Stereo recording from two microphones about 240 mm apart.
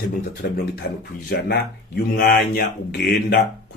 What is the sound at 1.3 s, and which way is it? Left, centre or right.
Speech, left.